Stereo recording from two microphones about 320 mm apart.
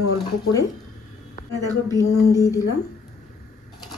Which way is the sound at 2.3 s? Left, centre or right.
Centre.